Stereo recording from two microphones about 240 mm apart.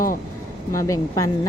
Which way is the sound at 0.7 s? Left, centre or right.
Centre.